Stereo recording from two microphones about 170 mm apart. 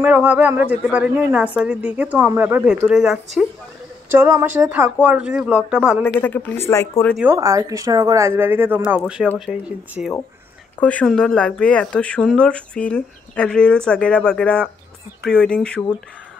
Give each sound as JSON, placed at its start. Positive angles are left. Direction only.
{"t": 0.0, "sound": "speech", "side_deg": -5}
{"t": 4.1, "sound": "speech", "side_deg": -15}
{"t": 6.0, "sound": "speech", "side_deg": 10}
{"t": 7.3, "sound": "speech", "side_deg": -20}
{"t": 10.8, "sound": "speech", "side_deg": 10}